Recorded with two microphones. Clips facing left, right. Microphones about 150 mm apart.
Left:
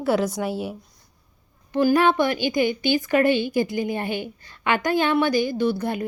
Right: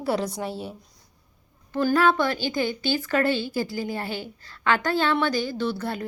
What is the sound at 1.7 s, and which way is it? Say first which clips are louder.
Speech: left 3 dB; 15° left (ahead or behind).